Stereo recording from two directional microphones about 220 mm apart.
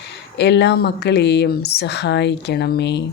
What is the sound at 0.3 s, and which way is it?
A woman's voice, 50° left (ahead or behind).